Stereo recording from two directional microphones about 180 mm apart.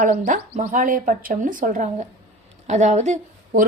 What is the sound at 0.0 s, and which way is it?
A woman's voice, 45° right (ahead or behind).